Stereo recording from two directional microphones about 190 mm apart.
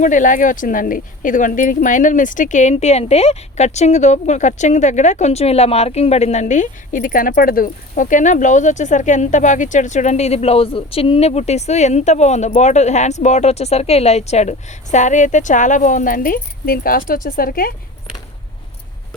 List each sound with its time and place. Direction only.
0.0 s speech: 40° left (ahead or behind)